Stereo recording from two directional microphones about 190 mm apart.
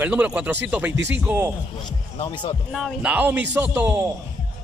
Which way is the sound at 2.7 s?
5° right (ahead or behind).